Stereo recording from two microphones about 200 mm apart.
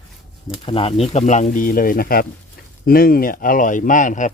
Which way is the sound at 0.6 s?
25° left (ahead or behind).